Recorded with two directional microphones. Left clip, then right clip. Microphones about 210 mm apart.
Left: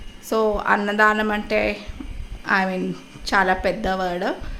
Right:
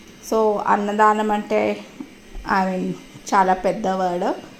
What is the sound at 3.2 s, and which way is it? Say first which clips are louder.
Speech: right 2 dB; centre (ahead or behind).